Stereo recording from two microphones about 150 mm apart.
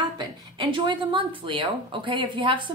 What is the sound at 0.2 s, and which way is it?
Speech, 30° right (ahead or behind).